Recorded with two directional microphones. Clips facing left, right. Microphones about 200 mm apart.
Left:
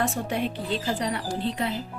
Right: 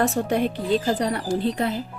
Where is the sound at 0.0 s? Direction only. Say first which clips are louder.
Right 5 dB; 45° right (ahead or behind).